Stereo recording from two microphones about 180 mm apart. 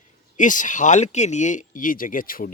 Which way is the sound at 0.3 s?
45° left (ahead or behind).